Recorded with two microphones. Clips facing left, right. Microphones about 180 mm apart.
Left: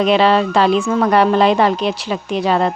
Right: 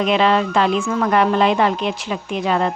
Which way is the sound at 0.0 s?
35° left (ahead or behind).